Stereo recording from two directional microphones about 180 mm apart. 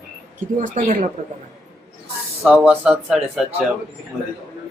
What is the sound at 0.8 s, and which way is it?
Speech, 40° right (ahead or behind).